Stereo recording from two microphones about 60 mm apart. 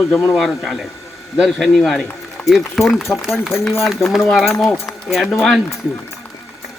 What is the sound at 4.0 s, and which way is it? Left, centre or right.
Speech, left.